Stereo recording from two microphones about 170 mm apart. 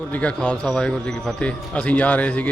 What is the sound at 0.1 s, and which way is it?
A man's voice, 10° left (ahead or behind).